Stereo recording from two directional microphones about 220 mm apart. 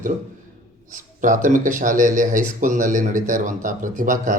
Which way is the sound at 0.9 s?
35° right (ahead or behind).